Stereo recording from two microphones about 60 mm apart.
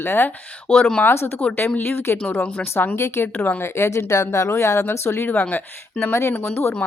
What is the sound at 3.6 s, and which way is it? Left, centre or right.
Speech, left.